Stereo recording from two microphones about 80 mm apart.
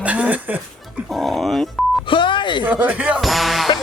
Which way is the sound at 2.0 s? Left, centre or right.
Left.